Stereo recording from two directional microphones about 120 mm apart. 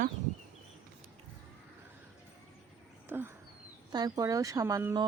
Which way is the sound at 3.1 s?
20° right (ahead or behind).